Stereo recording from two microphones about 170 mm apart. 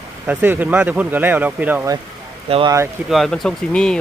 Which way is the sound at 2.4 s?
35° right (ahead or behind).